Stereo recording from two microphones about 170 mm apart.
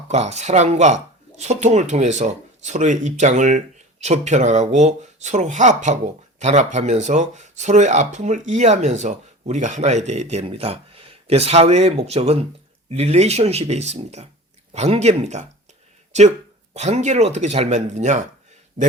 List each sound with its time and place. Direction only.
0.1 s speech: 40° right (ahead or behind)
16.7 s speech: 40° right (ahead or behind)